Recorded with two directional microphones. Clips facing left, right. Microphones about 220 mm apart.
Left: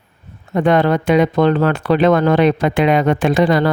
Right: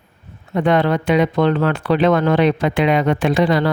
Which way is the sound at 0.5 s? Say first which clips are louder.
Left 2 dB; 45° left (ahead or behind).